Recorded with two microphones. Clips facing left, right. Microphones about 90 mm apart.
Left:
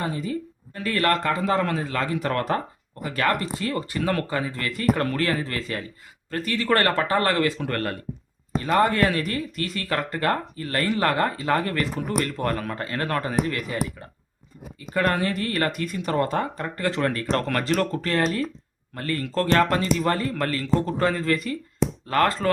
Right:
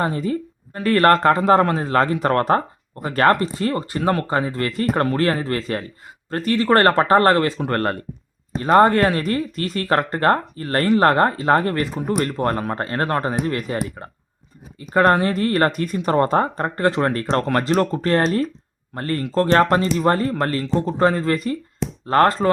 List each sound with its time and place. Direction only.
0.0 s speech: 45° right (ahead or behind)